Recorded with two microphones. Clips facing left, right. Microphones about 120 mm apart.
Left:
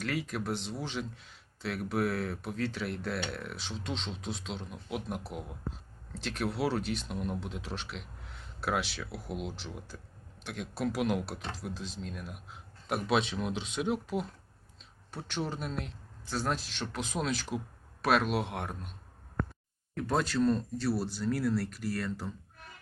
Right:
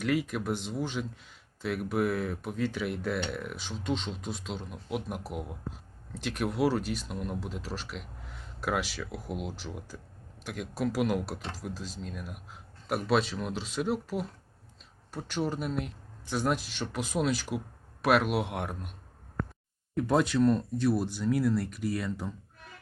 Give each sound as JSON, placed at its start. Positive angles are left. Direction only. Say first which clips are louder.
{"t": 0.0, "sound": "speech", "louder": "right 5 dB", "side_deg": -5}
{"t": 9.0, "sound": "speech", "louder": "right 2 dB", "side_deg": -45}
{"t": 9.3, "sound": "speech", "louder": "even", "side_deg": -5}
{"t": 11.7, "sound": "speech", "louder": "right 1 dB", "side_deg": -40}
{"t": 12.0, "sound": "speech", "louder": "right 1 dB", "side_deg": 0}
{"t": 20.0, "sound": "speech", "louder": "right 4 dB", "side_deg": -10}